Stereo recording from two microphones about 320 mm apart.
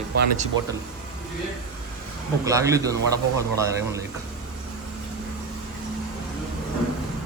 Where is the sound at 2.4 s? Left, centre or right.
Centre.